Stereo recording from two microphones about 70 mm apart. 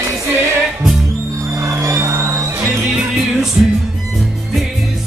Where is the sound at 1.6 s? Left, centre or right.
Right.